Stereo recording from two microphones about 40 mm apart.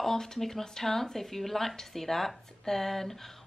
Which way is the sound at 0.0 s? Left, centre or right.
Centre.